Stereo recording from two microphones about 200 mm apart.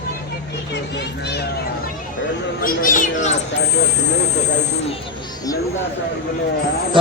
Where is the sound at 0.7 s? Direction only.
55° left (ahead or behind).